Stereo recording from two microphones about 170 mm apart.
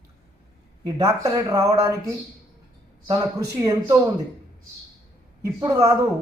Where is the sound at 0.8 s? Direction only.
25° right (ahead or behind).